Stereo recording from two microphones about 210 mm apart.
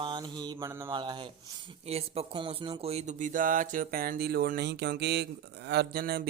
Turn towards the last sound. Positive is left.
turn(degrees=-45)  # may be behind; listen again after turning